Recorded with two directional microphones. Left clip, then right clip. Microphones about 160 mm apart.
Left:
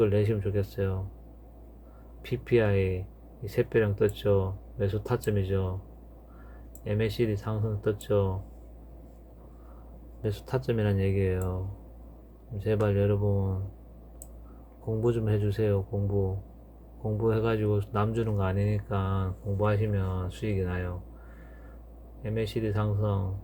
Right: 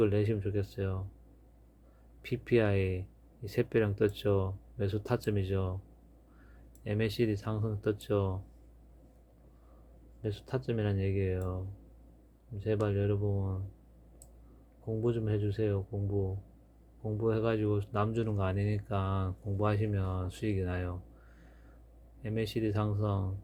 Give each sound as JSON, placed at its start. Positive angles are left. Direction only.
{"t": 0.0, "sound": "speech", "side_deg": -25}
{"t": 2.2, "sound": "speech", "side_deg": -30}
{"t": 6.8, "sound": "speech", "side_deg": -30}
{"t": 10.2, "sound": "speech", "side_deg": -15}
{"t": 15.0, "sound": "speech", "side_deg": -15}
{"t": 22.2, "sound": "speech", "side_deg": -35}